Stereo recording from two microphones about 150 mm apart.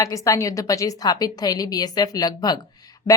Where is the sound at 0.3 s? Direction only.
20° left (ahead or behind).